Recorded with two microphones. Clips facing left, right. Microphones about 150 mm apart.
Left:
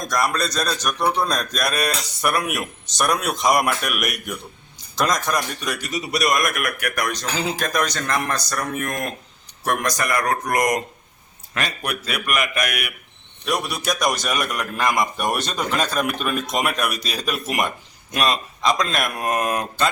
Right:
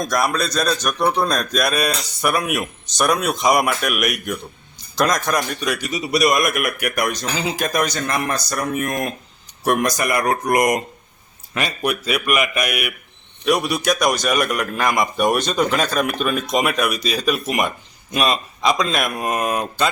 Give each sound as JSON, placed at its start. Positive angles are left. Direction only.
{"t": 0.1, "sound": "speech", "side_deg": -5}